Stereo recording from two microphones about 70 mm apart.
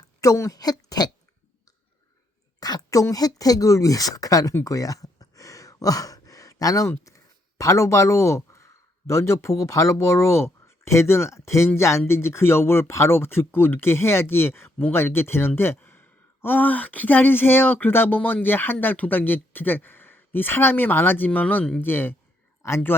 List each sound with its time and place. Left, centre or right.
0.2 s a woman's voice: left
0.6 s speech: left
2.6 s speech: left
4.6 s a sound: left
7.6 s speech: left
22.6 s speech: left